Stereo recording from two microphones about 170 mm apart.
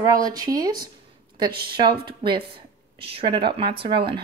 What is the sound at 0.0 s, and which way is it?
Speech, 20° right (ahead or behind).